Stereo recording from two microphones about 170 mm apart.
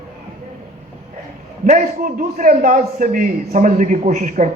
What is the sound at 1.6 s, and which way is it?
A man's voice, 50° right (ahead or behind).